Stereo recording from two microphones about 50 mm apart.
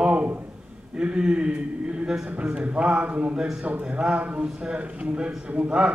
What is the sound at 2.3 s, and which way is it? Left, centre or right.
A man's voice, right.